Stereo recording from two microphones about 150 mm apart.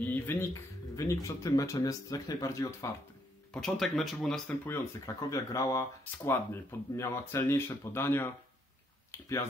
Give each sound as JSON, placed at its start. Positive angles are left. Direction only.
{"t": 0.0, "sound": "speech", "side_deg": 15}
{"t": 3.5, "sound": "speech", "side_deg": 0}
{"t": 5.0, "sound": "speech", "side_deg": 20}